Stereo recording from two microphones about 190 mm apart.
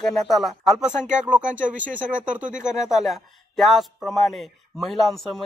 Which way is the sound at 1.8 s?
45° right (ahead or behind).